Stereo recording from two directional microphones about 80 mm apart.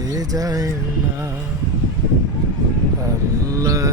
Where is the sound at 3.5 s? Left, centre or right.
Right.